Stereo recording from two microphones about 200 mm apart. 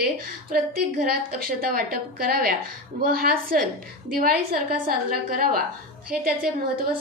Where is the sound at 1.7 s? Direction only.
50° right (ahead or behind).